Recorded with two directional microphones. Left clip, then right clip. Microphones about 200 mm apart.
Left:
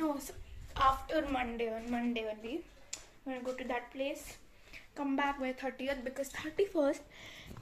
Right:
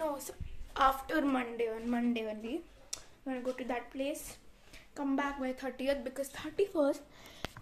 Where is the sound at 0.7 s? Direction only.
35° right (ahead or behind).